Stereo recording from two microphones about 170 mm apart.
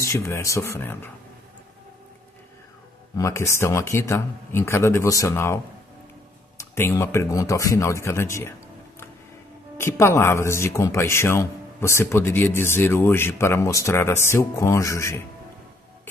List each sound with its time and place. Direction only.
0.0 s speech: 15° left (ahead or behind)
3.2 s speech: 15° left (ahead or behind)
6.6 s speech: 15° left (ahead or behind)
9.8 s speech: 15° left (ahead or behind)